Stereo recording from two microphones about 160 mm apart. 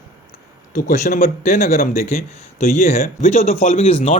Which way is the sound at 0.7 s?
55° left (ahead or behind).